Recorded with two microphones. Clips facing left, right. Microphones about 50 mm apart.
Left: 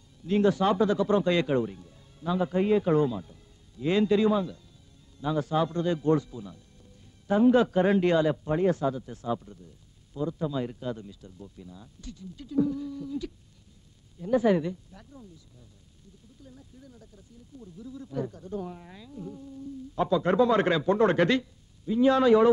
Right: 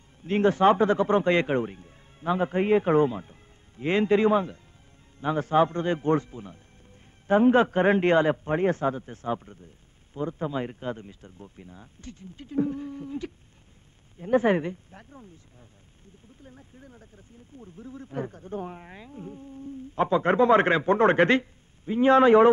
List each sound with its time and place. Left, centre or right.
0.2 s speech: right